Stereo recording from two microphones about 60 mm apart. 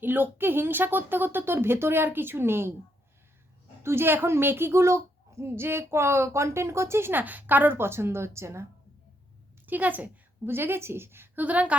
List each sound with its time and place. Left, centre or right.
0.0 s speech: right
3.8 s a child's voice: right
7.1 s speech: right
9.6 s a woman's voice: right
10.4 s speech: right
11.4 s a woman's voice: right